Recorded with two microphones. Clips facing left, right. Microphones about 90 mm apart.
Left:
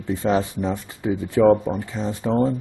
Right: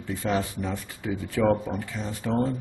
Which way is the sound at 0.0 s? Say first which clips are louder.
Left 6 dB; 25° left (ahead or behind).